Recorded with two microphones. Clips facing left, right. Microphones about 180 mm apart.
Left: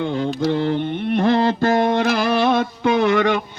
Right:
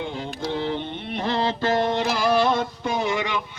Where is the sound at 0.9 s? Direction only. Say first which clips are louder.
Left 8 dB; 50° left (ahead or behind).